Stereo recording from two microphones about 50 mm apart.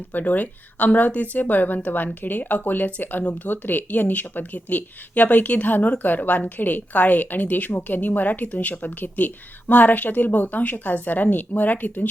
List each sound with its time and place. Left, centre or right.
0.1 s speech: left